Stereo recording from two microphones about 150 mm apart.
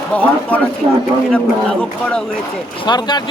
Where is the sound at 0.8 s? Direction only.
35° right (ahead or behind).